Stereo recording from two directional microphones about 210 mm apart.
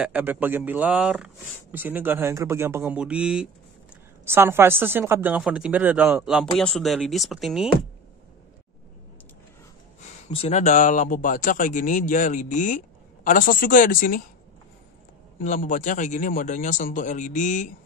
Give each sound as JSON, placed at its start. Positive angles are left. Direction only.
{"t": 0.0, "sound": "speech", "side_deg": -10}
{"t": 10.2, "sound": "speech", "side_deg": 30}
{"t": 15.3, "sound": "speech", "side_deg": 40}